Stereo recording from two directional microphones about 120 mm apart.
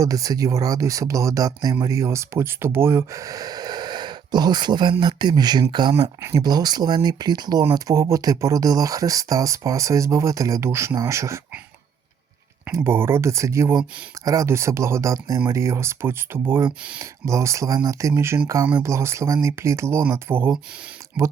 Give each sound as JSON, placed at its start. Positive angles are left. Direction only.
{"t": 0.0, "sound": "speech", "side_deg": -30}
{"t": 5.9, "sound": "speech", "side_deg": -25}
{"t": 12.6, "sound": "speech", "side_deg": -20}